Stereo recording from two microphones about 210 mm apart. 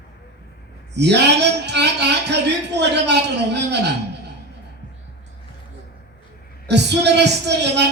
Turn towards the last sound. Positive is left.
turn(degrees=-55)  # may be behind; listen again after turning